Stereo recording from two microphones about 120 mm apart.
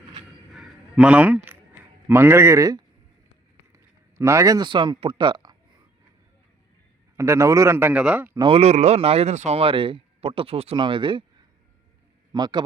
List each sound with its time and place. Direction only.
0.5 s a sound: 5° right (ahead or behind)
2.0 s a man's voice: 20° right (ahead or behind)
4.2 s speech: 25° right (ahead or behind)
7.2 s a man's voice: 25° right (ahead or behind)
8.4 s speech: 60° right (ahead or behind); by 11.2 s 45° right (ahead or behind)
12.3 s speech: 35° right (ahead or behind)